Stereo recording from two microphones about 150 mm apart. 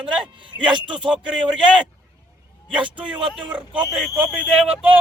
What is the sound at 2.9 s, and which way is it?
Speech, 5° right (ahead or behind).